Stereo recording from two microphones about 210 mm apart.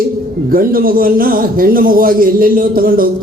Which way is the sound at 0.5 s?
45° right (ahead or behind).